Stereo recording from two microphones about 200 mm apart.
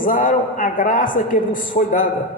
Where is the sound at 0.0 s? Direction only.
40° left (ahead or behind).